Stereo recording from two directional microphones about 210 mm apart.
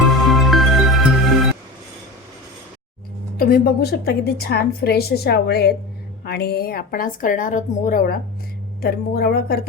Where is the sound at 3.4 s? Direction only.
45° left (ahead or behind).